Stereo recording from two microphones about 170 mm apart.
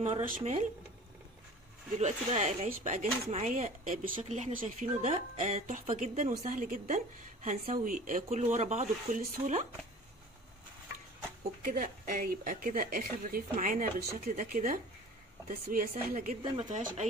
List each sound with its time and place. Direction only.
0.4 s speech: 35° right (ahead or behind)
2.0 s speech: 40° right (ahead or behind)
11.6 s a woman's voice: 55° right (ahead or behind)